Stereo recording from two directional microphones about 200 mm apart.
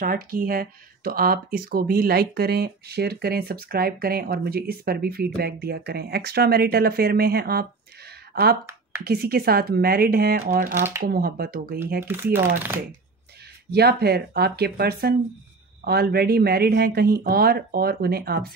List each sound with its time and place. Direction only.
0.0 s speech: 45° right (ahead or behind)
9.0 s speech: 50° right (ahead or behind)
12.0 s speech: 10° right (ahead or behind)
13.7 s speech: 55° right (ahead or behind)